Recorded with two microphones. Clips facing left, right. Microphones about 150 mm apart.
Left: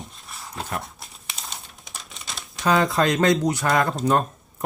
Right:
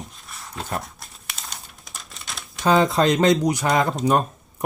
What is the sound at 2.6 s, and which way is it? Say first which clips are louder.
Speech: right 2 dB; 25° right (ahead or behind).